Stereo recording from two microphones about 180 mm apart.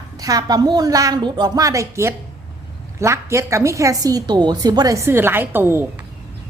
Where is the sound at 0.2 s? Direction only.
20° right (ahead or behind).